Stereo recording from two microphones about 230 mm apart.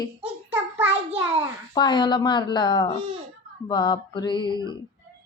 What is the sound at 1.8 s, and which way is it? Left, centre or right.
A woman's voice, centre.